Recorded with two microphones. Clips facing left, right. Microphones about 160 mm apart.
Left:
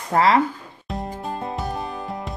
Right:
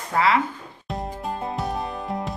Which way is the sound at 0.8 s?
Centre (ahead or behind).